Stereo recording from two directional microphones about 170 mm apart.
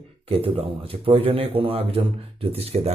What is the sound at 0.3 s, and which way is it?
Speech, 35° right (ahead or behind).